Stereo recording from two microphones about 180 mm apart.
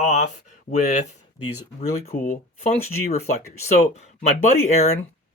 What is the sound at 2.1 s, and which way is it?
Speech, 45° left (ahead or behind).